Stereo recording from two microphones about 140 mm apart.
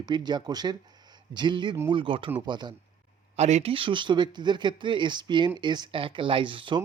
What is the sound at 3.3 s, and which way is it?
Speech, 50° right (ahead or behind).